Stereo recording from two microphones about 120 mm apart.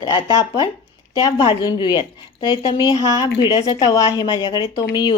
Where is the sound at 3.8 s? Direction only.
30° left (ahead or behind).